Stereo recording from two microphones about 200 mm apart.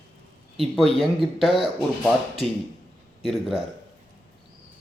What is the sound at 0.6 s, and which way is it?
Speech, centre (ahead or behind).